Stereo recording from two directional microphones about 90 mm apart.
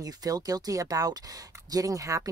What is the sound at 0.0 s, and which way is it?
Speech, 45° right (ahead or behind).